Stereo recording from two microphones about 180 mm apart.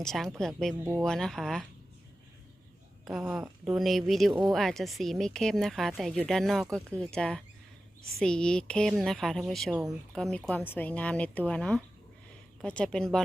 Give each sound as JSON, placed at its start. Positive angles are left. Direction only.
{"t": 0.0, "sound": "speech", "side_deg": 0}
{"t": 3.0, "sound": "speech", "side_deg": 0}